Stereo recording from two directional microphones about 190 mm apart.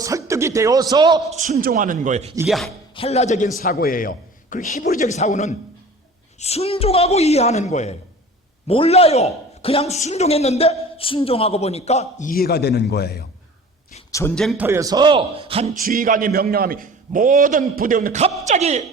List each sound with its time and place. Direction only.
0.0 s a man's voice: 15° right (ahead or behind)
1.3 s a man's voice: 40° right (ahead or behind)
2.5 s chopping: centre (ahead or behind)
2.9 s a man's voice: 30° left (ahead or behind)
12.3 s a man's voice: 55° left (ahead or behind)
14.1 s a man's voice: 15° left (ahead or behind)
14.6 s a man's voice: 15° right (ahead or behind)
15.7 s a man's voice: 50° right (ahead or behind)